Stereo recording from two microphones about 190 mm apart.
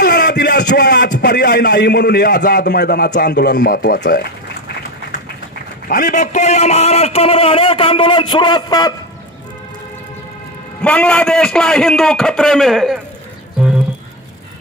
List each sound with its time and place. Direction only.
0.0 s a man's voice: 60° left (ahead or behind)
5.9 s a man's voice: 45° left (ahead or behind); by 8.9 s 20° left (ahead or behind)
10.8 s a man's voice: 5° left (ahead or behind)